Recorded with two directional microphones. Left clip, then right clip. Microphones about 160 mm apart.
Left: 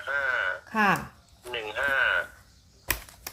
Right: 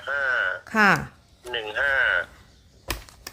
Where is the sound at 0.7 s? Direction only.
55° right (ahead or behind).